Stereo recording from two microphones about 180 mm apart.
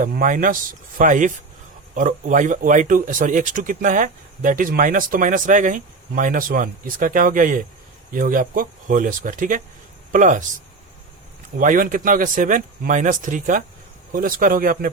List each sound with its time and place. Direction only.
0.0 s speech: 45° right (ahead or behind)
11.5 s speech: 50° right (ahead or behind)